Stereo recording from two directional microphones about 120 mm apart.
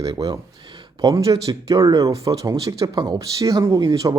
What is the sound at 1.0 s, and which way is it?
Speech, 30° right (ahead or behind).